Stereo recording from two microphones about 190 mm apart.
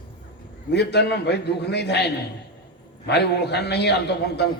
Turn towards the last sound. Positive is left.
turn(degrees=60)  # may be behind; listen again after turning